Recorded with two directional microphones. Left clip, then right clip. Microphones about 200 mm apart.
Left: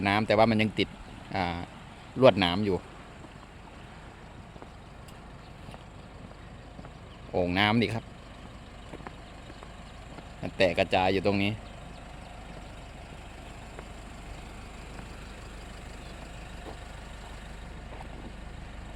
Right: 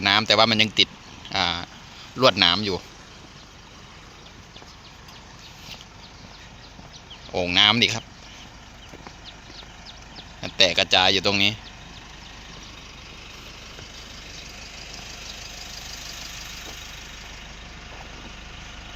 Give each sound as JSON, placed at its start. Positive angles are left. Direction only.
{"t": 0.0, "sound": "speech", "side_deg": 10}
{"t": 7.3, "sound": "speech", "side_deg": 10}
{"t": 10.4, "sound": "speech", "side_deg": 10}
{"t": 14.6, "sound": "vehicle", "side_deg": 55}